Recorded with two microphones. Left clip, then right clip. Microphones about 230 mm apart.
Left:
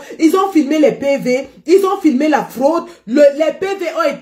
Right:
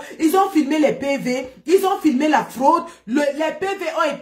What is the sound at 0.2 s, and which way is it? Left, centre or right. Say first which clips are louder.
Speech: left 4 dB; centre.